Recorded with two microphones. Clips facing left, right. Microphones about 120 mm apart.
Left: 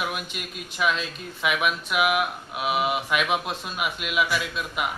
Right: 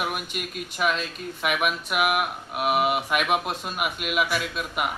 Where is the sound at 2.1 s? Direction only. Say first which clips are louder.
Left 1 dB; 50° right (ahead or behind).